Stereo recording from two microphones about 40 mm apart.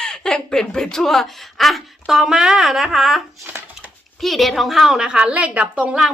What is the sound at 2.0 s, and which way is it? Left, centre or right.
A woman's voice, centre.